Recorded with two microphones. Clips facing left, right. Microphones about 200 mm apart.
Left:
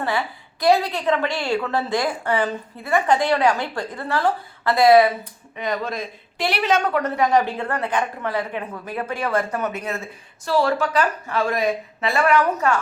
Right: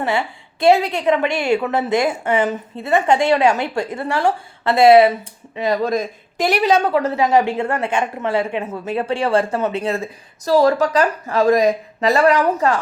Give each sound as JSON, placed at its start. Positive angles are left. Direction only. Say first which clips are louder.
{"t": 0.0, "sound": "a woman's voice", "louder": "right 3 dB", "side_deg": -25}